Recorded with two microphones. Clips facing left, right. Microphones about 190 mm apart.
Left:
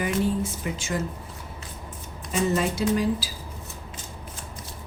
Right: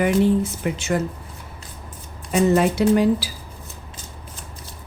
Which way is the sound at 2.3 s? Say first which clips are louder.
Right 7 dB; 65° right (ahead or behind).